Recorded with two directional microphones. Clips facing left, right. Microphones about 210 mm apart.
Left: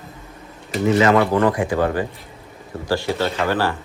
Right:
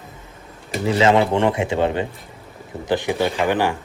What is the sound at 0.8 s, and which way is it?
A man's voice, 30° right (ahead or behind).